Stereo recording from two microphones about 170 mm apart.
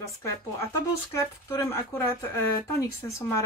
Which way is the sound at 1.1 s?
15° left (ahead or behind).